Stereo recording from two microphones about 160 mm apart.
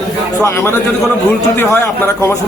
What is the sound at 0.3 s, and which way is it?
A man's voice, 20° left (ahead or behind).